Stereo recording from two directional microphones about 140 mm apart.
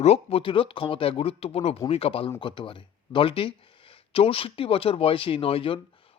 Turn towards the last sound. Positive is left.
turn(degrees=40)  # may be behind; listen again after turning